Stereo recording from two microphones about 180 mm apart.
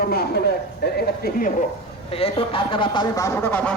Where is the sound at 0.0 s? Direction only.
60° left (ahead or behind).